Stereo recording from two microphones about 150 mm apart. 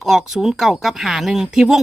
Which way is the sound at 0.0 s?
Centre (ahead or behind).